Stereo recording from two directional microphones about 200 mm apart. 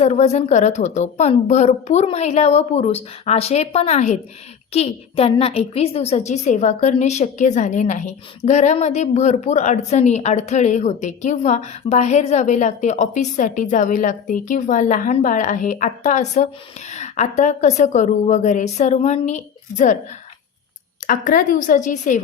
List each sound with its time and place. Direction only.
0.0 s a woman's voice: 35° left (ahead or behind)
21.1 s a woman's voice: 45° left (ahead or behind)